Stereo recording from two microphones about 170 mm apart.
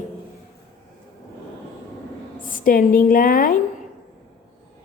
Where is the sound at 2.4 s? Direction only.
55° left (ahead or behind).